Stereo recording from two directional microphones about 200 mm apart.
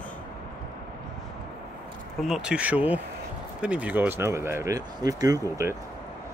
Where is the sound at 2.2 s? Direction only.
Centre (ahead or behind).